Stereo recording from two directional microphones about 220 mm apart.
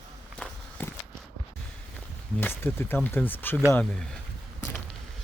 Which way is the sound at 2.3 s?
10° left (ahead or behind).